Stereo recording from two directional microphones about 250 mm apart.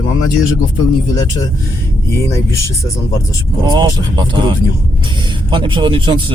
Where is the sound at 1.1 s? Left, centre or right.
Centre.